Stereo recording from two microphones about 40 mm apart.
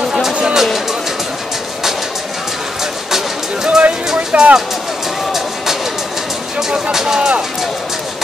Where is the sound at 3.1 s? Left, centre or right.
Centre.